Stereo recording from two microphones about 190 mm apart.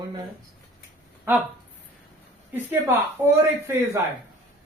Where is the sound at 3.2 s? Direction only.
10° right (ahead or behind).